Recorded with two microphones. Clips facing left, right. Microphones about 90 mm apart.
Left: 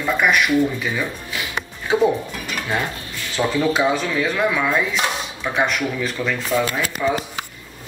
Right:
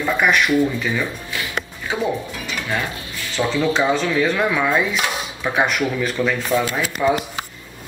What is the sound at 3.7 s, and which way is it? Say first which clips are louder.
Speech: right 1 dB; 5° left (ahead or behind).